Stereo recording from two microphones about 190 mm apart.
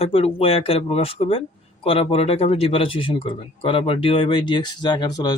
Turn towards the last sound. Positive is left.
turn(degrees=20)  # may be behind; listen again after turning